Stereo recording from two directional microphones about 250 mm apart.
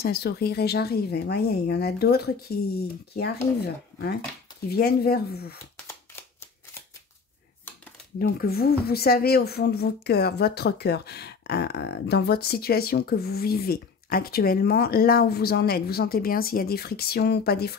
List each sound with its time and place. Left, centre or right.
0.0 s speech: left
8.2 s speech: left